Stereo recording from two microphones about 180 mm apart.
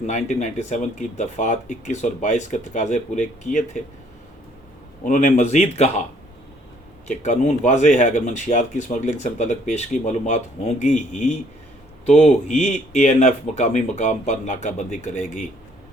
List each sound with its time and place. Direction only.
0.0 s speech: 40° left (ahead or behind)
5.0 s speech: 45° left (ahead or behind)
7.1 s speech: 40° left (ahead or behind)